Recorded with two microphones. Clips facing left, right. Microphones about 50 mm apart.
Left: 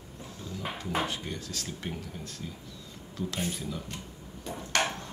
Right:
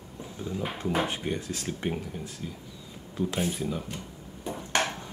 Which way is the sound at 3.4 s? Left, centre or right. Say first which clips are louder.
Right 4 dB; centre.